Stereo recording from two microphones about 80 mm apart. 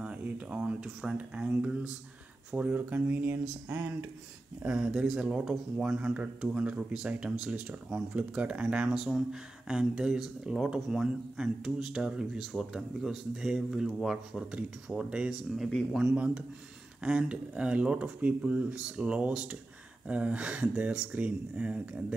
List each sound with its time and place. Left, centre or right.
0.0 s speech: centre
4.6 s speech: centre